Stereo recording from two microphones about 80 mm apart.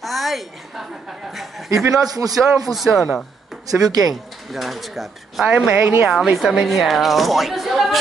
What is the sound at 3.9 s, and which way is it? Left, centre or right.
Speech, right.